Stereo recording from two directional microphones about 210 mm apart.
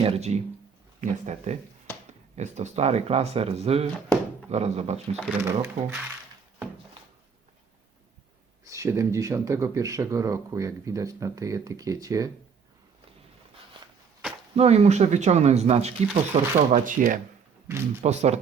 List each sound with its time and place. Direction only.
0.0 s speech: 30° right (ahead or behind)
5.2 s speech: 10° right (ahead or behind)
8.6 s speech: 15° right (ahead or behind)
14.5 s speech: 30° right (ahead or behind)